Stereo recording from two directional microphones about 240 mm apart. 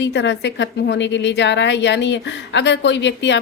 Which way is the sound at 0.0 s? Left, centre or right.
Left.